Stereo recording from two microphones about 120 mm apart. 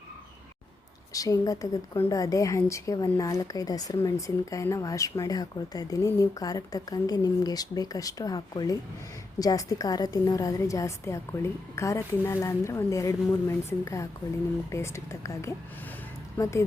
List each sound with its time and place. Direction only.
1.1 s speech: 30° left (ahead or behind)